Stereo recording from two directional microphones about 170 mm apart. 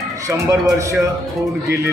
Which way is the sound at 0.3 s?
20° right (ahead or behind).